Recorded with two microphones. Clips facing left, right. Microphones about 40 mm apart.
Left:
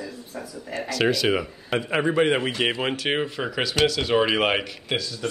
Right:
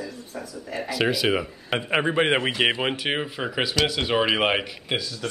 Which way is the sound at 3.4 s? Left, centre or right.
Centre.